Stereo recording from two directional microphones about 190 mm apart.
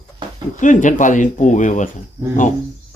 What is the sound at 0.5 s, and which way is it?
Speech, 40° left (ahead or behind).